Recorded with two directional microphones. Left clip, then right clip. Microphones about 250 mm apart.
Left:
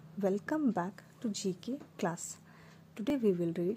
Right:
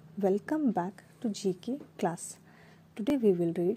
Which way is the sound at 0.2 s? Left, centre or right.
Centre.